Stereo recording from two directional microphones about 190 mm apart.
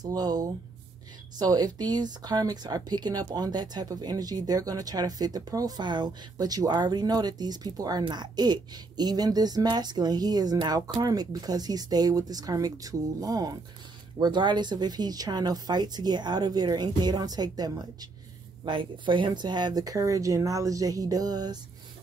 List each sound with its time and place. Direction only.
0.0 s speech: 20° right (ahead or behind)